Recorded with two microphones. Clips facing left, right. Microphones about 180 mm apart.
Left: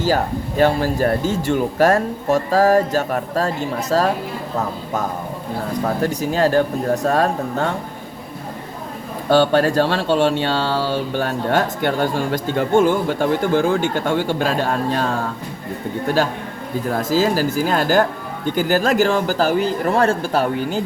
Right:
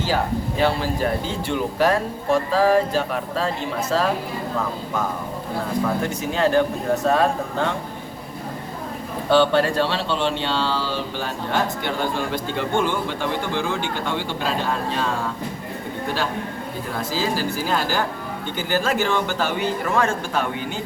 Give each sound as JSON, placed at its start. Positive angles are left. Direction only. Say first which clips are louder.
{"t": 0.0, "sound": "speech", "louder": "left 3 dB", "side_deg": 45}
{"t": 5.8, "sound": "a man's voice", "louder": "left 3 dB", "side_deg": 40}
{"t": 9.3, "sound": "speech", "louder": "left 3 dB", "side_deg": 45}
{"t": 16.9, "sound": "a man's voice", "louder": "left 7 dB", "side_deg": 45}